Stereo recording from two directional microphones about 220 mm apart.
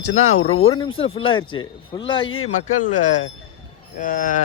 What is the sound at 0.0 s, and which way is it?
Speech, 80° left.